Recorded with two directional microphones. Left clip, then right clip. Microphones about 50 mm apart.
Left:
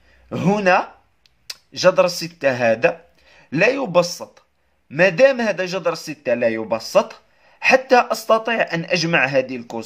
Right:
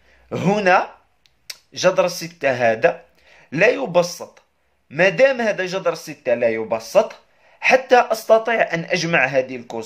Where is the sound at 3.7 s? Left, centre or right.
Left.